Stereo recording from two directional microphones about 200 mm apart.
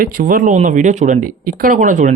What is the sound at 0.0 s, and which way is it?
A woman's voice, 45° right (ahead or behind).